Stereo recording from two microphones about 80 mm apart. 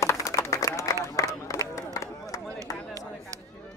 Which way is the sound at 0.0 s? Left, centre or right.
Left.